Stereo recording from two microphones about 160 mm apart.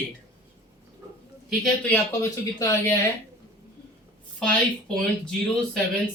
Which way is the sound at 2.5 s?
20° left (ahead or behind).